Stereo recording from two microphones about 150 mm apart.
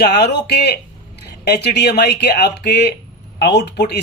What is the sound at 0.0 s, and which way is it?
Speech, 90° left.